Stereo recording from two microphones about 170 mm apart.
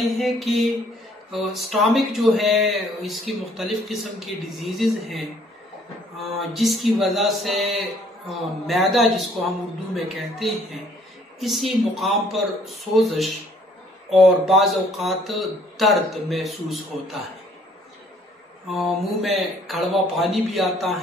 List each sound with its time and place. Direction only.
0.2 s speech: centre (ahead or behind)
6.3 s speech: centre (ahead or behind)
18.7 s speech: centre (ahead or behind)